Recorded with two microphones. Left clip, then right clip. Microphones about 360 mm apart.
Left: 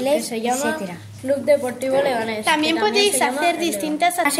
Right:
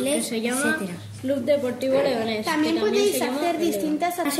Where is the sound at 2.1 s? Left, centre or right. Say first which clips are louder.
Left 5 dB; left.